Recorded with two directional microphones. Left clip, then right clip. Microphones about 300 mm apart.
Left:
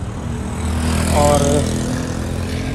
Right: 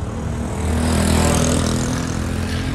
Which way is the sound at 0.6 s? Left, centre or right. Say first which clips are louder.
Right 2 dB; right.